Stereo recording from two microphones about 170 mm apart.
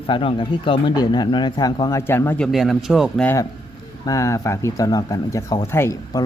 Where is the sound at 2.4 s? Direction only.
Centre (ahead or behind).